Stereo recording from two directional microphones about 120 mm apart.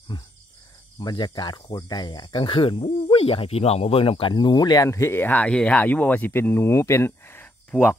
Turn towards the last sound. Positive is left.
turn(degrees=15)  # may be behind; listen again after turning